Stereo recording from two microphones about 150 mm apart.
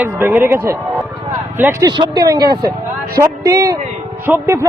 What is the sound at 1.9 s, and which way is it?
Speech, 30° right (ahead or behind).